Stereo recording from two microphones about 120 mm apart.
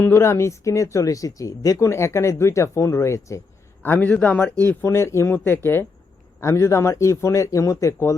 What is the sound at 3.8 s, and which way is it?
A man's voice, 15° left (ahead or behind).